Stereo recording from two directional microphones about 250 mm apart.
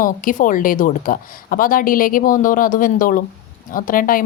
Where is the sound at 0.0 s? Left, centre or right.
Left.